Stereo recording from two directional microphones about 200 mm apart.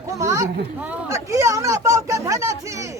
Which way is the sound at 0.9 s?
15° right (ahead or behind).